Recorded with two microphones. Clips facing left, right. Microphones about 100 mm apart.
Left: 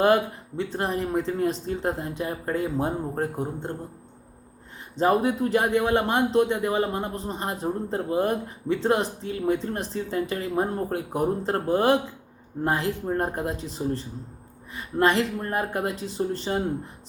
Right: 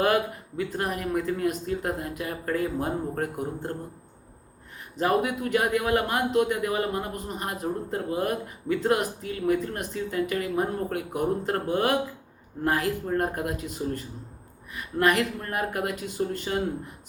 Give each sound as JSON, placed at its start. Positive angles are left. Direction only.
{"t": 0.0, "sound": "a man's voice", "side_deg": 30}
{"t": 4.9, "sound": "a man's voice", "side_deg": 30}